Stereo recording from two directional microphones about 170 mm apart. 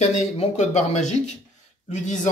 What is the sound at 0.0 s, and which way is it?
Speech, 45° left (ahead or behind).